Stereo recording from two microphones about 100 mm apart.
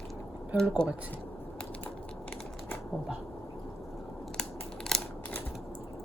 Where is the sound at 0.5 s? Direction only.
15° right (ahead or behind).